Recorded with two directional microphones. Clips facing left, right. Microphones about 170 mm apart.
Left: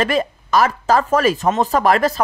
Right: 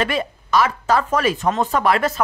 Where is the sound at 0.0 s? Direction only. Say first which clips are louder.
Left 3 dB; 40° left (ahead or behind).